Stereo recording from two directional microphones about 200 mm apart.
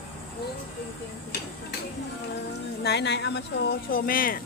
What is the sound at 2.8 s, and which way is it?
Speech, 60° left (ahead or behind).